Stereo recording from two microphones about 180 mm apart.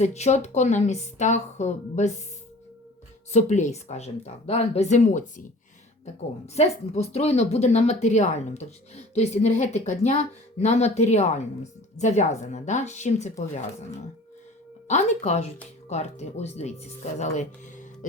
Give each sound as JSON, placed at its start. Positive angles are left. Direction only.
{"t": 0.0, "sound": "speech", "side_deg": 40}
{"t": 3.3, "sound": "speech", "side_deg": 40}
{"t": 6.5, "sound": "speech", "side_deg": 35}
{"t": 14.8, "sound": "speech", "side_deg": 40}